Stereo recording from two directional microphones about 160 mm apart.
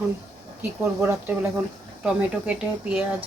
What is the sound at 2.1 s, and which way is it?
Speech, 5° right (ahead or behind).